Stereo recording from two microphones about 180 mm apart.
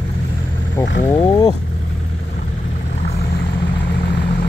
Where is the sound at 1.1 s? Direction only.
25° left (ahead or behind).